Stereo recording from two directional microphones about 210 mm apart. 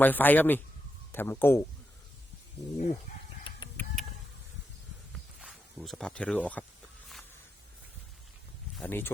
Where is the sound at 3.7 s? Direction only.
Centre (ahead or behind).